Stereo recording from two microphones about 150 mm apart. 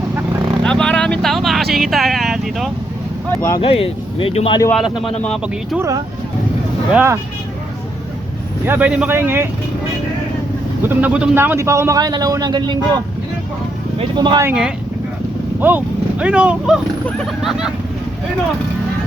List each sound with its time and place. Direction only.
0.6 s vehicle: 5° left (ahead or behind)
3.3 s speech: 20° left (ahead or behind)
3.6 s speech: 40° left (ahead or behind)
4.7 s speech: centre (ahead or behind)
6.9 s speech: 15° right (ahead or behind)
8.6 s speech: 10° right (ahead or behind)
10.8 s a man's voice: 10° right (ahead or behind); by 12.7 s 30° right (ahead or behind)
14.0 s a man's voice: 30° right (ahead or behind)
14.4 s speech: 5° right (ahead or behind)